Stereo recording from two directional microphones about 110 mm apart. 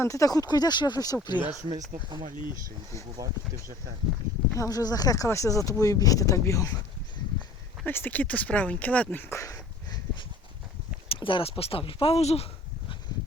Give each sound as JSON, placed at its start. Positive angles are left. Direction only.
{"t": 0.0, "sound": "speech", "side_deg": 30}
{"t": 4.5, "sound": "speech", "side_deg": 30}
{"t": 7.9, "sound": "speech", "side_deg": 15}
{"t": 9.3, "sound": "dog", "side_deg": 30}
{"t": 11.1, "sound": "speech", "side_deg": 50}